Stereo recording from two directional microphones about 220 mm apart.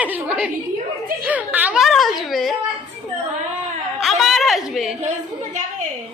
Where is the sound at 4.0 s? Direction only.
Centre (ahead or behind).